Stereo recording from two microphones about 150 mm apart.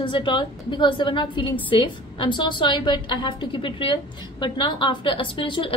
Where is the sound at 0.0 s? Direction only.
35° left (ahead or behind).